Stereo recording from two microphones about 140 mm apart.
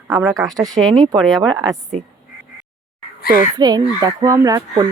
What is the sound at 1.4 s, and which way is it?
Speech, 25° right (ahead or behind).